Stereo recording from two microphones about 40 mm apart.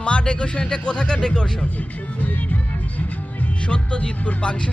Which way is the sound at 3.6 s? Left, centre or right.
Left.